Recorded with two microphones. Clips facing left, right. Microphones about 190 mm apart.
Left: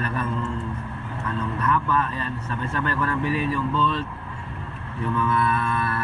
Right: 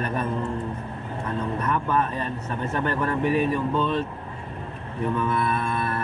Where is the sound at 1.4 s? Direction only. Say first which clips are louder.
Left 2 dB; 45° right (ahead or behind).